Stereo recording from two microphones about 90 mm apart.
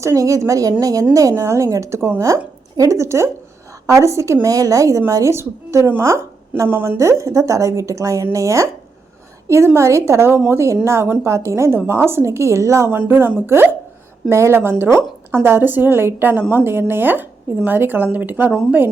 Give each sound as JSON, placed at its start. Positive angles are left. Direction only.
{"t": 0.0, "sound": "a woman's voice", "side_deg": -35}